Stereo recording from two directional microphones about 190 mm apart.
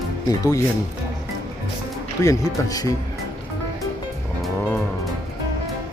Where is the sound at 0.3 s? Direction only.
20° left (ahead or behind).